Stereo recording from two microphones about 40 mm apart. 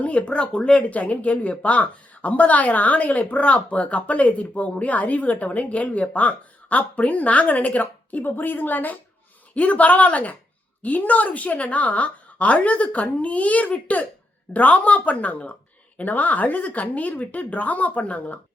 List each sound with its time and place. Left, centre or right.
0.0 s speech: left
0.8 s speech: left
8.2 s a woman's voice: left
9.6 s speech: left